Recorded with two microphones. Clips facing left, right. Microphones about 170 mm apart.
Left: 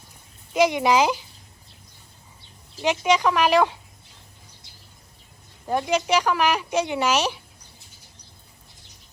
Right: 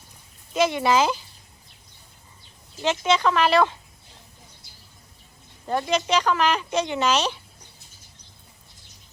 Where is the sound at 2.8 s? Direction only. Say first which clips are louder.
Left 1 dB; 10° left (ahead or behind).